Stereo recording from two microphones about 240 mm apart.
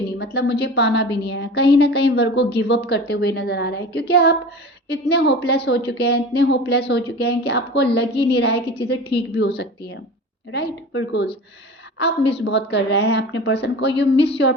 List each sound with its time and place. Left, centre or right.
0.2 s a woman's voice: left